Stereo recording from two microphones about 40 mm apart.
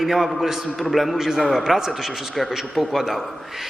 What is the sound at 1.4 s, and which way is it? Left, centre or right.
Speech, centre.